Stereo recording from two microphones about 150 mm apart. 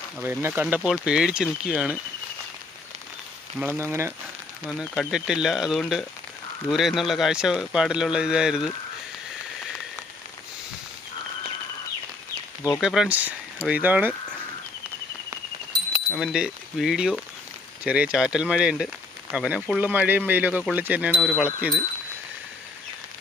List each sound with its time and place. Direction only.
0.2 s speech: 15° right (ahead or behind)
3.7 s speech: 15° right (ahead or behind)
4.8 s speech: 5° right (ahead or behind)
12.7 s speech: centre (ahead or behind)
16.1 s speech: 5° right (ahead or behind)